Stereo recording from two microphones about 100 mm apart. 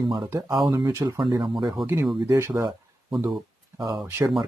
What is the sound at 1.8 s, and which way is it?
Speech, 20° right (ahead or behind).